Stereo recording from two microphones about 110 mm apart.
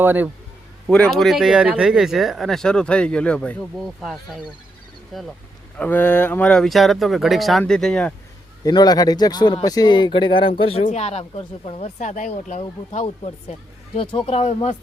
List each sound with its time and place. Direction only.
0.0 s a man's voice: 15° right (ahead or behind)
0.9 s speech: 5° left (ahead or behind)
3.8 s speech: centre (ahead or behind)
5.7 s speech: 15° left (ahead or behind)
6.5 s speech: 5° left (ahead or behind)
8.6 s speech: 40° left (ahead or behind); by 13.3 s 85° left
13.9 s speech: 55° left (ahead or behind); by 14.8 s 75° left (ahead or behind)